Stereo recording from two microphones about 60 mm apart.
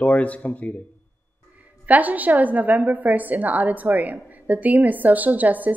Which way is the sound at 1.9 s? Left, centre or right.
Right.